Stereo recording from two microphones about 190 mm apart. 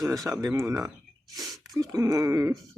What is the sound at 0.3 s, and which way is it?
Speech, 15° right (ahead or behind).